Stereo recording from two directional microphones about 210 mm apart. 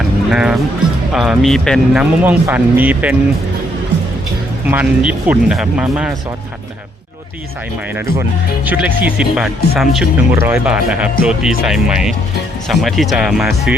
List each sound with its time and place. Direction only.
0.3 s speech: 5° right (ahead or behind)
4.7 s speech: 5° right (ahead or behind)
8.6 s speech: 10° right (ahead or behind)